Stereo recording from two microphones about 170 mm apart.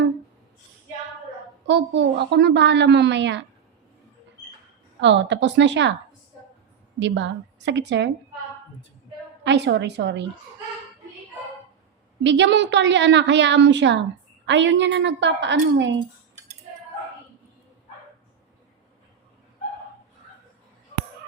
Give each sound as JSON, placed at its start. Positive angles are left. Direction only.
{"t": 1.6, "sound": "a woman's voice", "side_deg": -90}
{"t": 4.9, "sound": "a woman's voice", "side_deg": -90}
{"t": 7.0, "sound": "a woman's voice", "side_deg": -90}
{"t": 9.4, "sound": "a woman's voice", "side_deg": -90}
{"t": 12.2, "sound": "a woman's voice", "side_deg": -90}